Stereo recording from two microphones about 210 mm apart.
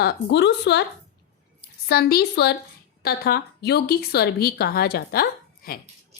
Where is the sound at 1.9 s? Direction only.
50° left (ahead or behind).